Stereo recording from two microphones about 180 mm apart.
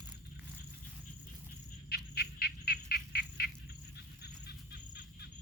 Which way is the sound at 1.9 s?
60° left (ahead or behind).